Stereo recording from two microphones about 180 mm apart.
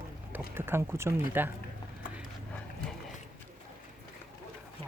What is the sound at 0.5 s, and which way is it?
Speech, 15° right (ahead or behind).